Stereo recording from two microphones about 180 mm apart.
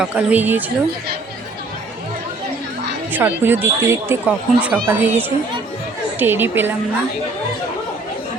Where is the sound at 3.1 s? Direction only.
10° right (ahead or behind).